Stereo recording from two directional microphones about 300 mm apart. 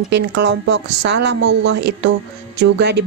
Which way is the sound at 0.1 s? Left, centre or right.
Right.